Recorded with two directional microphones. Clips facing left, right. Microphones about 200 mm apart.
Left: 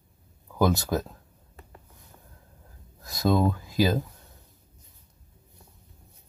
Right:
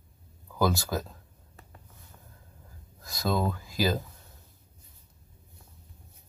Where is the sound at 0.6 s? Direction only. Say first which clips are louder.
Left 3 dB; 20° left (ahead or behind).